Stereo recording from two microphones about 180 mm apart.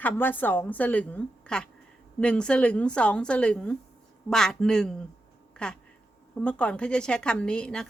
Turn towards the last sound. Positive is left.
turn(degrees=5)  # may be behind; listen again after turning